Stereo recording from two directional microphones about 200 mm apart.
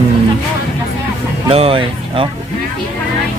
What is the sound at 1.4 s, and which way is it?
Speech, 30° right (ahead or behind).